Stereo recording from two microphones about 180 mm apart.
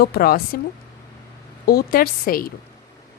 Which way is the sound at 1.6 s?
55° left (ahead or behind).